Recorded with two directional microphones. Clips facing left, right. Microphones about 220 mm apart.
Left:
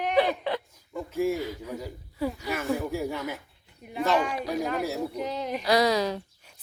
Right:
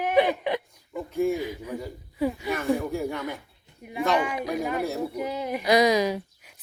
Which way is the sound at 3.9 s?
5° right (ahead or behind).